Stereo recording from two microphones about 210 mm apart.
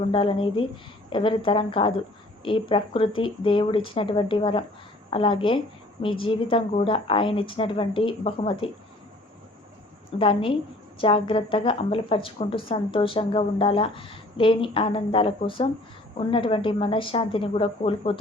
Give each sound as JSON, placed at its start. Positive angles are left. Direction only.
{"t": 0.1, "sound": "speech", "side_deg": 25}
{"t": 10.2, "sound": "speech", "side_deg": 25}